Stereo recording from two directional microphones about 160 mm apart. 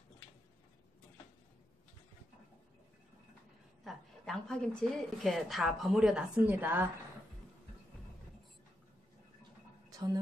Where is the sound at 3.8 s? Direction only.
5° left (ahead or behind); by 6.9 s 15° right (ahead or behind).